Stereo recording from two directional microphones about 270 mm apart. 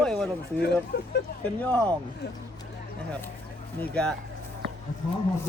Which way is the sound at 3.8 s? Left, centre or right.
Centre.